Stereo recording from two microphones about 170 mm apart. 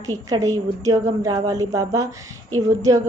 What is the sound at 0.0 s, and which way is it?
A woman's voice, 20° right (ahead or behind).